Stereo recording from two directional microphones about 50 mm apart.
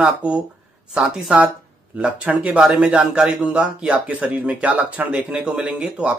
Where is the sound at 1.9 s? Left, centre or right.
Right.